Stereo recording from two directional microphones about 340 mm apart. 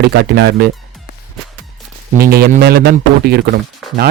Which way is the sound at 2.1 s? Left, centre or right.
Right.